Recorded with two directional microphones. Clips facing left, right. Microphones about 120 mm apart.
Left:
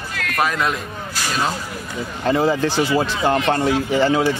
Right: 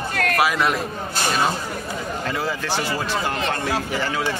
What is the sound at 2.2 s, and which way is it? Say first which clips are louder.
Speech: left 12 dB; 25° left (ahead or behind).